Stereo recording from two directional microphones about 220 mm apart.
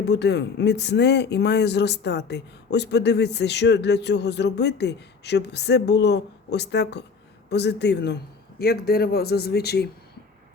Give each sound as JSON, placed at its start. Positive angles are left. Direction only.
{"t": 0.0, "sound": "speech", "side_deg": 50}